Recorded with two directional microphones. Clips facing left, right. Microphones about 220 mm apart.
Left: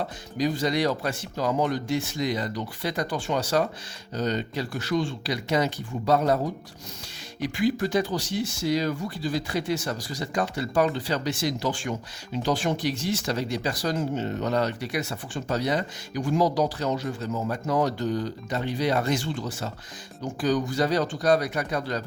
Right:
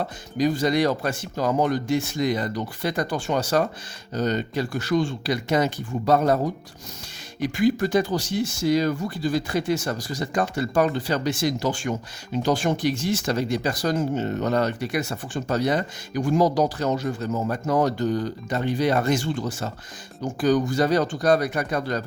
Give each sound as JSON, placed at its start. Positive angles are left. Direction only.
{"t": 0.3, "sound": "speech", "side_deg": -50}
{"t": 7.4, "sound": "speech", "side_deg": -50}